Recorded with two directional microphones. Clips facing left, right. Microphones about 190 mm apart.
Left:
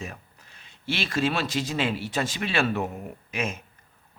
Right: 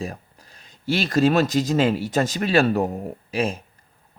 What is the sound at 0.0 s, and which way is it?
Speech, 35° right (ahead or behind).